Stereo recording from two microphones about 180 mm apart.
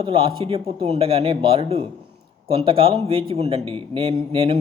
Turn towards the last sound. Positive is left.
turn(degrees=-30)  # may be behind; listen again after turning